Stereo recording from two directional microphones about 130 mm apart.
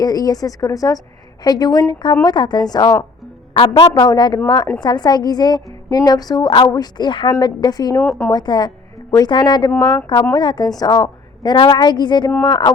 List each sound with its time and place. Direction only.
0.0 s a woman's voice: 30° left (ahead or behind)